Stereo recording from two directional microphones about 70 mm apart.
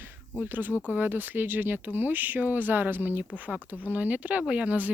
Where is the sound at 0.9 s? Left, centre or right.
Right.